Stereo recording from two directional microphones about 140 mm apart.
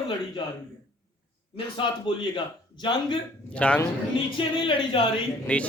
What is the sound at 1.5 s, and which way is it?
Speech, 35° left (ahead or behind).